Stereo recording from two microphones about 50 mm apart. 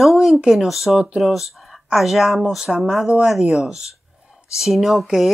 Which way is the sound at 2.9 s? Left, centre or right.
Centre.